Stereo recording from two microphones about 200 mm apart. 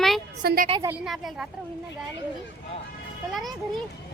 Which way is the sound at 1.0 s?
Centre (ahead or behind).